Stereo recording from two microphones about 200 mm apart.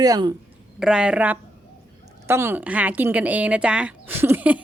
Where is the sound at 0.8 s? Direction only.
5° right (ahead or behind).